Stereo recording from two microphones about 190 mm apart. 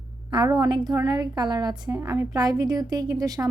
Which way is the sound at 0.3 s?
20° right (ahead or behind).